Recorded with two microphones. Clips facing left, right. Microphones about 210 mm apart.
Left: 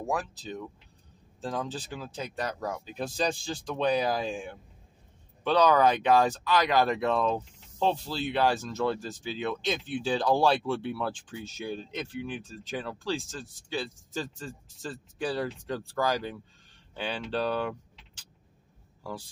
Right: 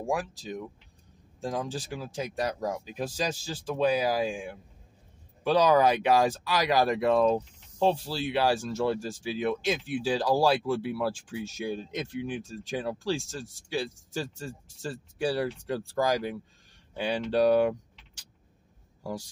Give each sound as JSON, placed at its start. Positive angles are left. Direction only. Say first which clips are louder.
{"t": 0.0, "sound": "speech", "louder": "right 1 dB", "side_deg": -10}